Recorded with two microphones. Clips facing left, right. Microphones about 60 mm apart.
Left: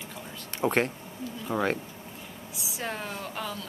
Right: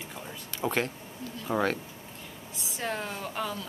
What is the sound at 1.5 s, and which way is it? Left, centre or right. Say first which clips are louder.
Speech: right 1 dB; centre.